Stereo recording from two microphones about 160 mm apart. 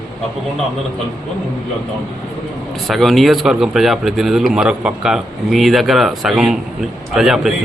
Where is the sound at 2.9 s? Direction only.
Centre (ahead or behind).